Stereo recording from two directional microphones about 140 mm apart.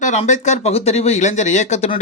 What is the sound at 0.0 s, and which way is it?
Speech, 60° left (ahead or behind).